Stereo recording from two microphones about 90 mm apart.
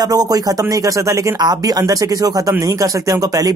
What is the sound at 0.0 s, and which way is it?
Speech, 45° right (ahead or behind).